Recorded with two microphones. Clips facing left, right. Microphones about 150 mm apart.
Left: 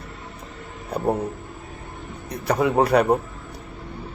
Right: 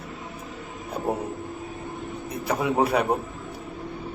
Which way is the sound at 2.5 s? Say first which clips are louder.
Left 4 dB; 5° right (ahead or behind).